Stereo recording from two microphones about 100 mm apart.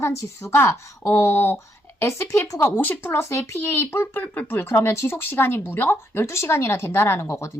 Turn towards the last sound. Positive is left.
turn(degrees=25)  # may be behind; listen again after turning